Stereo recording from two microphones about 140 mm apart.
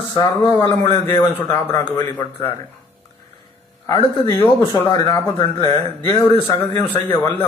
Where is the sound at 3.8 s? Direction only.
30° left (ahead or behind).